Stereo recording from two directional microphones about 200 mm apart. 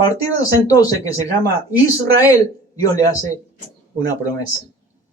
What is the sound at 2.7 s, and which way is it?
Speech, 15° left (ahead or behind).